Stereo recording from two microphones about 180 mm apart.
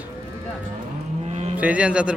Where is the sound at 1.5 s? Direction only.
10° right (ahead or behind).